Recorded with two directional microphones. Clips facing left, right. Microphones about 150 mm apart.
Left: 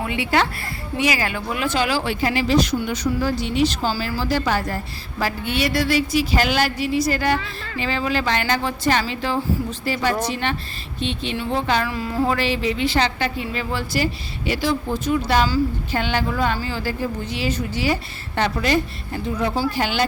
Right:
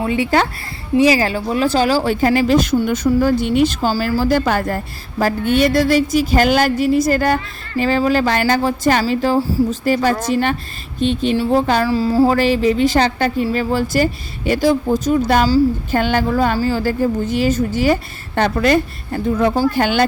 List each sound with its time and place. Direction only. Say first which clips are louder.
0.0 s a woman's voice: right 5 dB; 40° right (ahead or behind)